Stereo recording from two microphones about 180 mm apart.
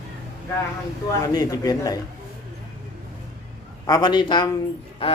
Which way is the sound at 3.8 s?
20° left (ahead or behind).